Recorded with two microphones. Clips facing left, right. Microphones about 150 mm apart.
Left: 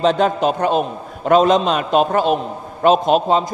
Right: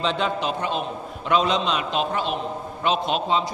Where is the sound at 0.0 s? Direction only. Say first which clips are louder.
Left 9 dB; 45° left (ahead or behind).